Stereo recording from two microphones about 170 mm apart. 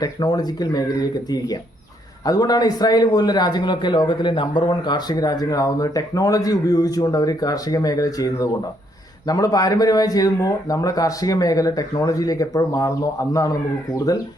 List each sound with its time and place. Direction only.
0.0 s a man's voice: 25° left (ahead or behind)
2.2 s a man's voice: 20° left (ahead or behind)